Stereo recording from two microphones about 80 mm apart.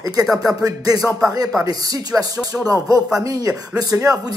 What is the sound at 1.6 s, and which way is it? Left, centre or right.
Speech, right.